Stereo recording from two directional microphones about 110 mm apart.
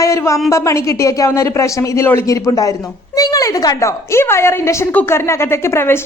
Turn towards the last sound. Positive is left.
turn(degrees=25)  # may be behind; listen again after turning